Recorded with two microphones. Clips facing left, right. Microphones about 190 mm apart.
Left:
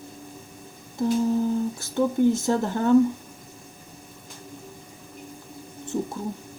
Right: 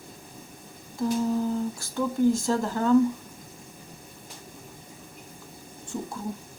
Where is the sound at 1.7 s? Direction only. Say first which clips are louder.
Left 4 dB; 20° left (ahead or behind).